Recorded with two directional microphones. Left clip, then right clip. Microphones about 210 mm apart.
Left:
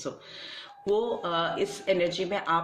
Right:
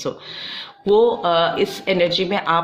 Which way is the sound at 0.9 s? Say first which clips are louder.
Right 12 dB; 35° right (ahead or behind).